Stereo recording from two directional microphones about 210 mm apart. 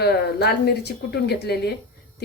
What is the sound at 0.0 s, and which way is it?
Speech, 50° left (ahead or behind).